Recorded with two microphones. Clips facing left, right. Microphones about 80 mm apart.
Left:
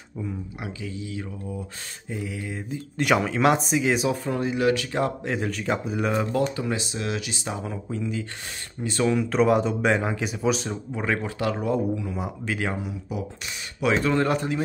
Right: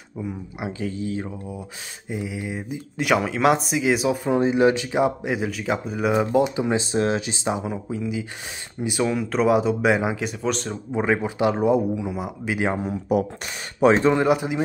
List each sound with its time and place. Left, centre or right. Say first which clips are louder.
0.2 s speech: right 3 dB; centre
0.7 s speech: right 8 dB; right
1.5 s speech: even; centre
3.0 s speech: right 1 dB; centre
4.2 s speech: right 6 dB; right
6.9 s speech: right 7 dB; right; by 10.8 s centre
10.9 s speech: right 6 dB; centre
12.7 s speech: right 9 dB; right
14.0 s speech: right 4 dB; centre